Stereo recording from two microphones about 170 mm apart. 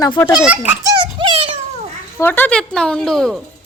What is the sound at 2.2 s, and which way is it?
A woman's voice, 10° left (ahead or behind).